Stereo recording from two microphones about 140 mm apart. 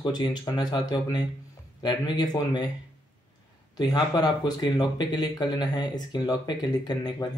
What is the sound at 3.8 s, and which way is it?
Speech, 30° left (ahead or behind).